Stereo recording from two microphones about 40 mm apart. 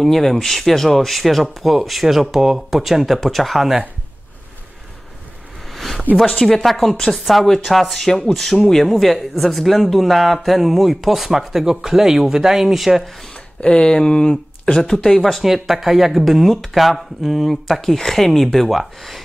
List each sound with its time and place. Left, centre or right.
0.0 s speech: centre
5.7 s a sound: centre
6.1 s speech: centre
8.8 s speech: centre
13.6 s speech: left; by 19.2 s centre